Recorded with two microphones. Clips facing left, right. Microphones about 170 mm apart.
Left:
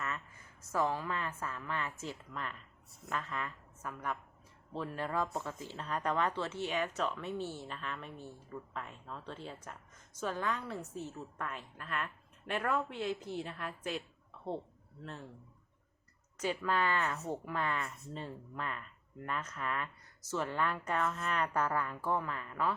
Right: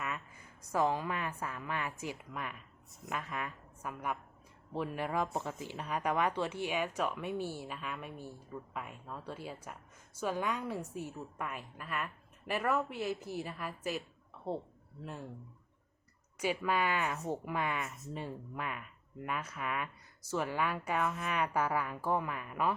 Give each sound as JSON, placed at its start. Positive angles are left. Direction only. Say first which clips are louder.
{"t": 0.6, "sound": "a woman's voice", "louder": "right 2 dB", "side_deg": -15}
{"t": 16.4, "sound": "a woman's voice", "louder": "right 1 dB", "side_deg": -10}